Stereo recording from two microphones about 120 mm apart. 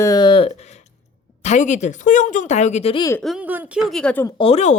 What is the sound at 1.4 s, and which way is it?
Speech, 80° left.